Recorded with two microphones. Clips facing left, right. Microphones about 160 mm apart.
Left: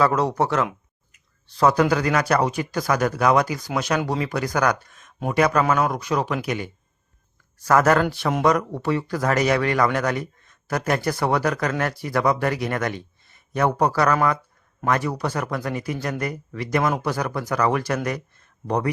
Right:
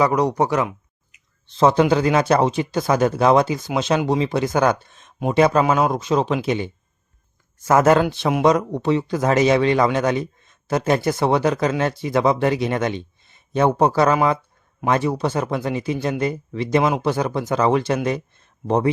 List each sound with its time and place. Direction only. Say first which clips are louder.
0.0 s speech: right 2 dB; 15° right (ahead or behind)